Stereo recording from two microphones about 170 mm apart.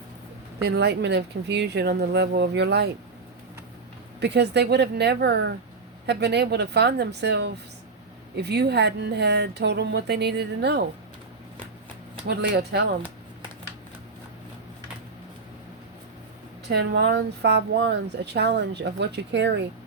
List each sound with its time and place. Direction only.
0.6 s speech: 80° right
4.2 s a woman's voice: 80° right
12.3 s a woman's voice: 70° right (ahead or behind)
16.6 s speech: 85° right